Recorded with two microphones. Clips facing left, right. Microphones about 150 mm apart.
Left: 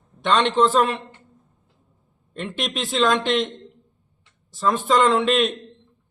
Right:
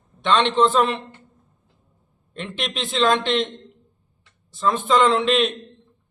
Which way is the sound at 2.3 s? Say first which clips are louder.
Left 1 dB; 5° left (ahead or behind).